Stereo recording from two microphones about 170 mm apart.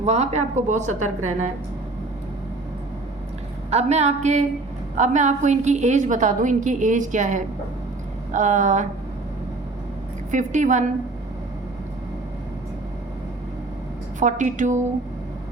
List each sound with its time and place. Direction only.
0.0 s a woman's voice: 40° right (ahead or behind)
3.7 s a woman's voice: 40° right (ahead or behind)
10.3 s a woman's voice: 45° right (ahead or behind)
14.2 s a woman's voice: 45° right (ahead or behind)